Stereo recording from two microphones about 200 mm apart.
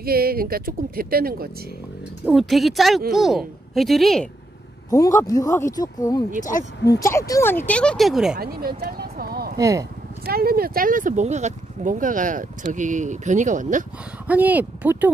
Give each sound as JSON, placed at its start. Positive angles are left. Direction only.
{"t": 0.0, "sound": "speech", "side_deg": -50}
{"t": 2.2, "sound": "a woman's voice", "side_deg": 0}
{"t": 5.2, "sound": "speech", "side_deg": 20}
{"t": 6.4, "sound": "speech", "side_deg": 50}
{"t": 7.0, "sound": "speech", "side_deg": 15}
{"t": 8.4, "sound": "a sound", "side_deg": -50}
{"t": 9.6, "sound": "speech", "side_deg": -15}
{"t": 10.2, "sound": "speech", "side_deg": -50}
{"t": 14.2, "sound": "speech", "side_deg": -10}